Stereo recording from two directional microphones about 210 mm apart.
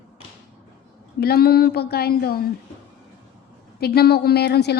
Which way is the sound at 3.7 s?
50° left (ahead or behind).